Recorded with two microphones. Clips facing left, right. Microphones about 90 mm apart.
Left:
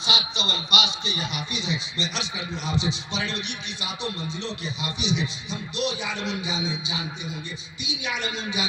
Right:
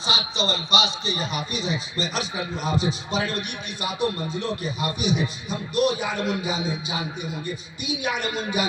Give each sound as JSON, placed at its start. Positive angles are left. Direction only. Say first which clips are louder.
{"t": 0.1, "sound": "speech", "louder": "right 3 dB", "side_deg": -35}